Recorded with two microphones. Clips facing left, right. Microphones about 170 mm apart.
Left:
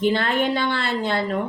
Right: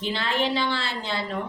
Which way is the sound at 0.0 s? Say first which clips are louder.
Left 6 dB; 55° left (ahead or behind).